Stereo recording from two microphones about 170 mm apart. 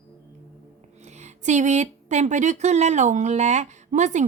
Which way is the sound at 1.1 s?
45° right (ahead or behind).